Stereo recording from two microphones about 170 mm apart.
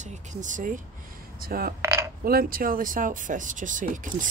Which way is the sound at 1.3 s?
60° right (ahead or behind).